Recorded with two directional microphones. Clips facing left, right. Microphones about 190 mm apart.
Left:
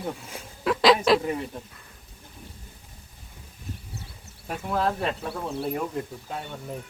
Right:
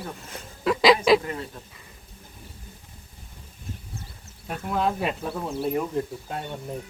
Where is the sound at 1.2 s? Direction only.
15° left (ahead or behind).